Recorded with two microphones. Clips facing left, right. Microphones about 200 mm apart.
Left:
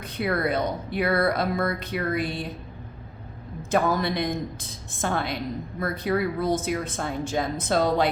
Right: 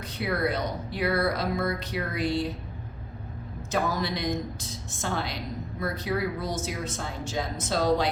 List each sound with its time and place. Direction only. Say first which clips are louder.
0.0 s speech: left 2 dB; 55° left (ahead or behind)
3.7 s speech: left 5 dB; 55° left (ahead or behind)